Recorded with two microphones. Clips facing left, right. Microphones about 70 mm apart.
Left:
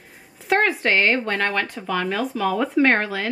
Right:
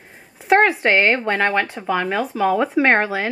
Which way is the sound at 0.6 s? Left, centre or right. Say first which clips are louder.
Right 3 dB; centre.